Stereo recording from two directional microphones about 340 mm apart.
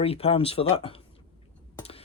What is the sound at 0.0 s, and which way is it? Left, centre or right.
Speech, centre.